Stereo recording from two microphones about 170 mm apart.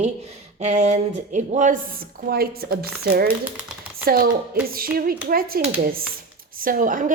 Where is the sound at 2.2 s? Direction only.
65° right (ahead or behind).